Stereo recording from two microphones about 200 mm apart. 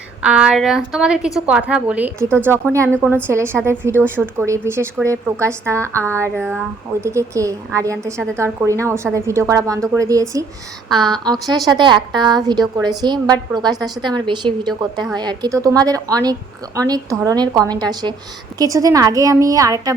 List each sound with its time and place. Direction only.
0.2 s a woman's voice: 5° right (ahead or behind)
6.2 s speech: 5° left (ahead or behind)
7.0 s a woman's voice: 15° right (ahead or behind)